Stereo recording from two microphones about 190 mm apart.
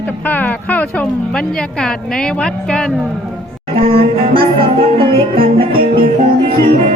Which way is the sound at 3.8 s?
30° right (ahead or behind).